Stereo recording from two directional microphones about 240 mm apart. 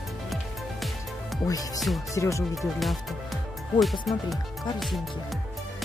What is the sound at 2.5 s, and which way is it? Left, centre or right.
Speech, centre.